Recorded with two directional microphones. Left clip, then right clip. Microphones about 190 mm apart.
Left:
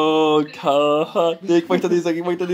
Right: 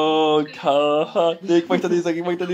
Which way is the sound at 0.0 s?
20° left (ahead or behind).